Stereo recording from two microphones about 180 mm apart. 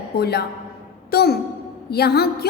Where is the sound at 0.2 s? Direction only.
65° left (ahead or behind).